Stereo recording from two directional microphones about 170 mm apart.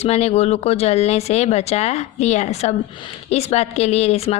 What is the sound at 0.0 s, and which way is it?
Speech, 40° left (ahead or behind).